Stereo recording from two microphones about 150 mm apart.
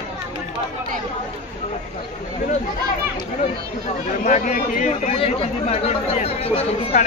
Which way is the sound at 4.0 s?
55° left (ahead or behind).